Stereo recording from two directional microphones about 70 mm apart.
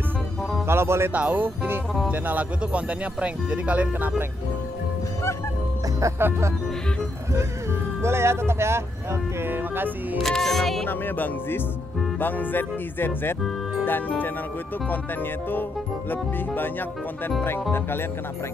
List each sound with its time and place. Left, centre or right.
0.7 s music: right
1.1 s speech: right
6.1 s speech: right
8.0 s speech: right
10.1 s speech: centre
10.9 s speech: left
16.1 s speech: left